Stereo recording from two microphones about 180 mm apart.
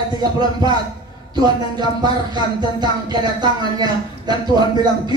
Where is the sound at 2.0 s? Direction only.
25° right (ahead or behind).